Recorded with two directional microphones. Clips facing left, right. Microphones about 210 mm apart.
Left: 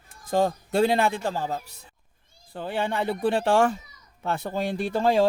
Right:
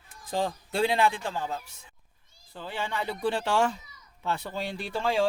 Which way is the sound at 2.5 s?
55° left (ahead or behind).